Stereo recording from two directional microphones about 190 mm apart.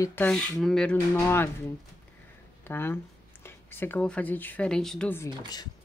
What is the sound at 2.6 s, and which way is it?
Speech, 10° left (ahead or behind).